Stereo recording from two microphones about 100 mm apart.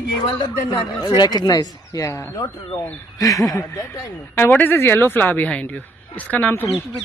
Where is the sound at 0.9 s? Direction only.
45° left (ahead or behind).